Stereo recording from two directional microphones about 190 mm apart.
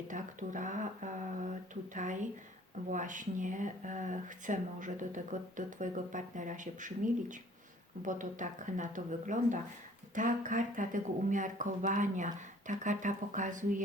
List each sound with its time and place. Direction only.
0.1 s speech: 40° right (ahead or behind)